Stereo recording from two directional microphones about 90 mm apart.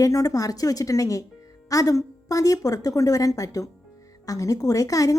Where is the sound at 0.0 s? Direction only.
40° left (ahead or behind).